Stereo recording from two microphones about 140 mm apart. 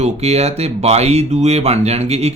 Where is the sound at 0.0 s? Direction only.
50° right (ahead or behind).